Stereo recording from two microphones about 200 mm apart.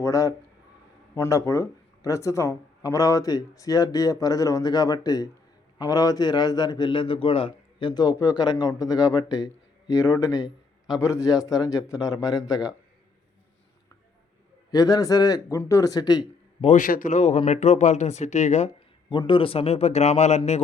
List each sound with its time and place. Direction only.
0.0 s a man's voice: 15° left (ahead or behind)
14.7 s speech: 20° left (ahead or behind)
16.6 s speech: 40° left (ahead or behind)
19.1 s speech: 25° left (ahead or behind)